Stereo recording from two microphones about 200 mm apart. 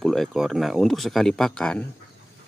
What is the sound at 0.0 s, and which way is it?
Speech, centre (ahead or behind).